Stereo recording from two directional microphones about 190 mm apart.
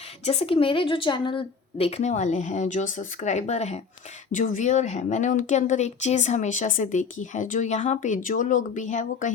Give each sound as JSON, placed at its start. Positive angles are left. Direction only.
{"t": 0.3, "sound": "a woman's voice", "side_deg": 30}